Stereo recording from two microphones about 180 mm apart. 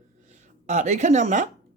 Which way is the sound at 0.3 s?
40° right (ahead or behind).